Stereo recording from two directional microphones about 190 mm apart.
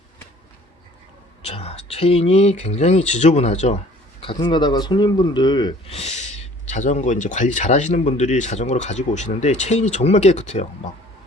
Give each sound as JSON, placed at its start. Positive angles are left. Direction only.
{"t": 1.5, "sound": "speech", "side_deg": 35}
{"t": 4.4, "sound": "speech", "side_deg": 25}
{"t": 6.0, "sound": "speech", "side_deg": 35}